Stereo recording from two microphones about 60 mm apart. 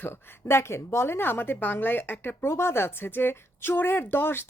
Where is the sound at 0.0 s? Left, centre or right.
Left.